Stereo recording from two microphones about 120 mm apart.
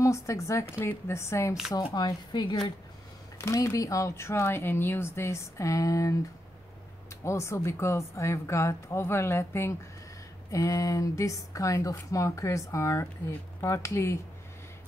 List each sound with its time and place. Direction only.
0.0 s speech: 25° left (ahead or behind)
1.8 s speech: 35° left (ahead or behind)
3.3 s speech: 25° left (ahead or behind)
7.2 s speech: 25° left (ahead or behind)